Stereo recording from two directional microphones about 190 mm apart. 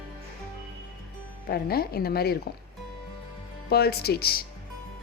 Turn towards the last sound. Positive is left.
turn(degrees=55)  # may be behind; listen again after turning